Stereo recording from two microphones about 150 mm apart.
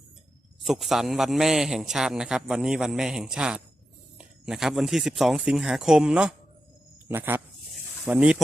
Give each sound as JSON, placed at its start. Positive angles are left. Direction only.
{"t": 0.6, "sound": "a man's voice", "side_deg": 0}